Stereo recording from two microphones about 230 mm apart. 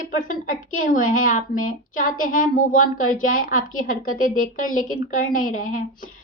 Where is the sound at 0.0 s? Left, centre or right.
Left.